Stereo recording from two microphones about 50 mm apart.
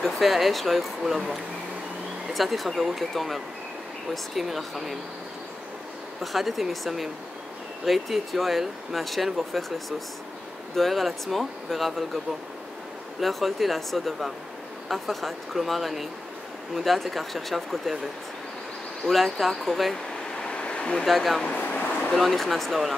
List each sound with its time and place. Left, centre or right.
0.0 s speech: centre
6.2 s speech: centre
13.2 s speech: centre
19.0 s speech: centre
20.3 s a sound: centre
21.0 s speech: centre
21.5 s a sound: left
22.1 s speech: centre